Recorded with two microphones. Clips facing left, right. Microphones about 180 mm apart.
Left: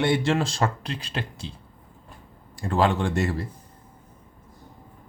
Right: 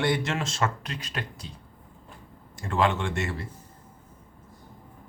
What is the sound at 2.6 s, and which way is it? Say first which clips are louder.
Speech: left 3 dB; 35° left (ahead or behind).